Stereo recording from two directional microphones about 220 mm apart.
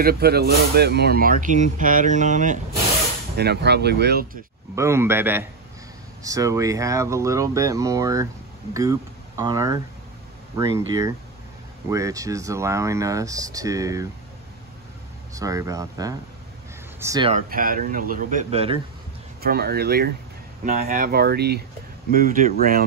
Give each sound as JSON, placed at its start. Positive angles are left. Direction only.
{"t": 0.0, "sound": "speech", "side_deg": -45}
{"t": 3.3, "sound": "speech", "side_deg": -50}
{"t": 4.7, "sound": "speech", "side_deg": -10}
{"t": 9.4, "sound": "speech", "side_deg": -15}
{"t": 11.9, "sound": "speech", "side_deg": -15}
{"t": 15.3, "sound": "speech", "side_deg": -15}
{"t": 17.3, "sound": "speech", "side_deg": -35}
{"t": 19.4, "sound": "speech", "side_deg": -45}